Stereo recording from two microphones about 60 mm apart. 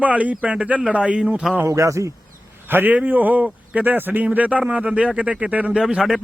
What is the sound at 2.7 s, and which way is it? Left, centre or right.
Speech, right.